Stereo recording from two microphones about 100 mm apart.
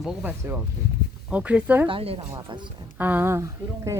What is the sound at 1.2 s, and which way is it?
Speech, 15° right (ahead or behind).